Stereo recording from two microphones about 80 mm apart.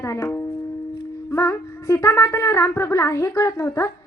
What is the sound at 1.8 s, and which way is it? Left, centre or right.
Speech, left.